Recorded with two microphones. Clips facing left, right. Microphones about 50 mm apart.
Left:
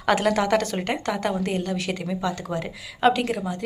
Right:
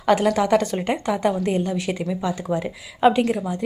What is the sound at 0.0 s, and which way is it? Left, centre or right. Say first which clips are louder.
A woman's voice: right 3 dB; centre.